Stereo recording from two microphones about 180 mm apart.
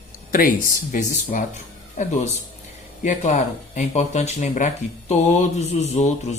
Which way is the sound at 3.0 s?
40° left (ahead or behind).